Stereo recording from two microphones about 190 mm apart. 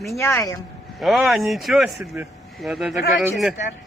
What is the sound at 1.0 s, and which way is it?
Speech, centre (ahead or behind).